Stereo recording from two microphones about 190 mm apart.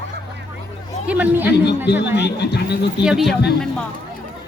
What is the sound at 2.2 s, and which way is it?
Speech, 60° left (ahead or behind).